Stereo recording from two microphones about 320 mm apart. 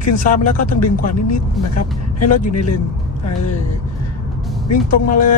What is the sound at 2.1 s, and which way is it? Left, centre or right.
Speech, left.